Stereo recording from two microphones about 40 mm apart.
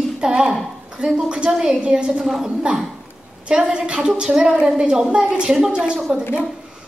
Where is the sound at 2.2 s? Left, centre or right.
Centre.